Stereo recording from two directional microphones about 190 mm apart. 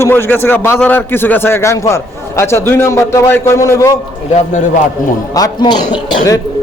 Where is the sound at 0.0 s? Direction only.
10° left (ahead or behind).